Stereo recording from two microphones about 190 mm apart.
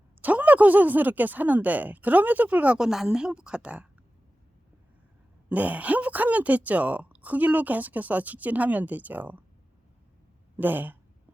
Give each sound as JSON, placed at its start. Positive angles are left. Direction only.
{"t": 0.2, "sound": "speech", "side_deg": -10}
{"t": 5.5, "sound": "speech", "side_deg": -10}
{"t": 10.6, "sound": "speech", "side_deg": -10}